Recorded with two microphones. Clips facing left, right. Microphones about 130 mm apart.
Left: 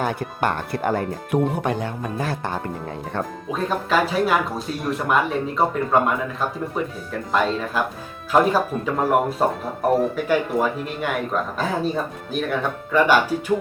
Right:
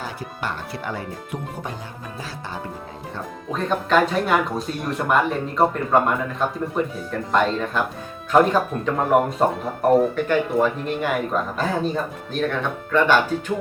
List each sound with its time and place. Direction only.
0.0 s speech: 55° left (ahead or behind)
1.5 s speech: 70° left (ahead or behind)
3.5 s speech: 5° left (ahead or behind)